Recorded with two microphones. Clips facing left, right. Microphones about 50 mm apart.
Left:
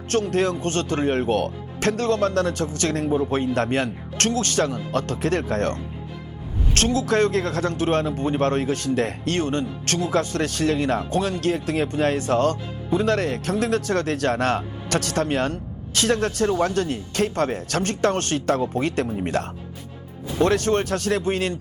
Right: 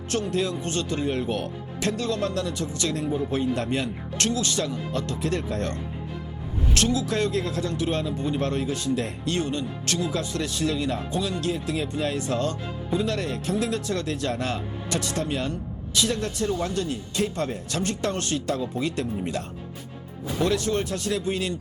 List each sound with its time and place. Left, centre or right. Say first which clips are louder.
0.1 s speech: left 5 dB; left